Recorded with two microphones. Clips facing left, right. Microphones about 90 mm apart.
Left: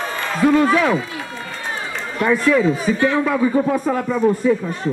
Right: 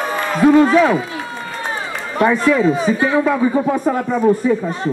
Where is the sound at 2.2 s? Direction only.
15° right (ahead or behind).